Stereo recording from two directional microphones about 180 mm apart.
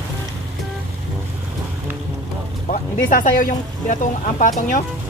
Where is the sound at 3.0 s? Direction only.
50° left (ahead or behind).